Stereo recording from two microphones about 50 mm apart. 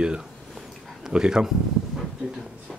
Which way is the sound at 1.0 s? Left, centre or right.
Centre.